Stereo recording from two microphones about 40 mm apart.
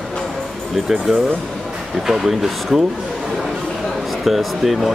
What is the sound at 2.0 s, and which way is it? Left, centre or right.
Speech, centre.